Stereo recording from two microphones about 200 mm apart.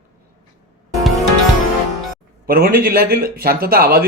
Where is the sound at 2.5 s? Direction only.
45° right (ahead or behind).